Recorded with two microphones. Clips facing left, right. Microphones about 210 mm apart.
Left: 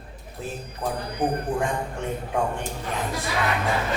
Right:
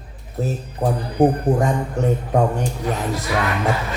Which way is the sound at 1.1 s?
45° right (ahead or behind).